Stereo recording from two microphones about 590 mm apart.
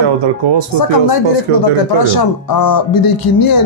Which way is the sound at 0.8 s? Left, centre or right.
Left.